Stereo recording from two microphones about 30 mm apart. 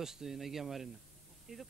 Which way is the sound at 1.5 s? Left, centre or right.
Centre.